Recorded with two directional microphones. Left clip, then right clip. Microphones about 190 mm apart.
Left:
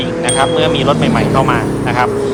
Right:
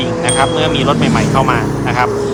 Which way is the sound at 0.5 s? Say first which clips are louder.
Left 1 dB; 15° right (ahead or behind).